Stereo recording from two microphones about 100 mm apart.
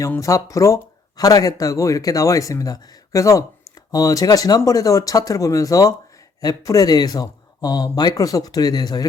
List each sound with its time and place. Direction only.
0.2 s speech: 35° left (ahead or behind)